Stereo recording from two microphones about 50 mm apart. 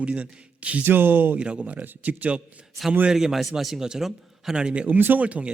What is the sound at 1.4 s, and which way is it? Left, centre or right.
Speech, right.